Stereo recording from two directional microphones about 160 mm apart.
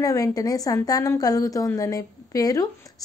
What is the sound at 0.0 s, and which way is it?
A woman's voice, 20° left (ahead or behind).